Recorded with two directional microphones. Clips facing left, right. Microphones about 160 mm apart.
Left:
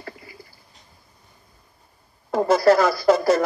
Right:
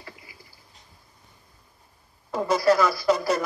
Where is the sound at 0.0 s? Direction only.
50° left (ahead or behind).